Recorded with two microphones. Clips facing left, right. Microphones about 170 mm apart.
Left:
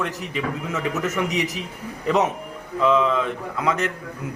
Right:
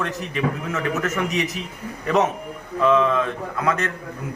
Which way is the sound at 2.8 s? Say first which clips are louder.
Right 1 dB; 15° left (ahead or behind).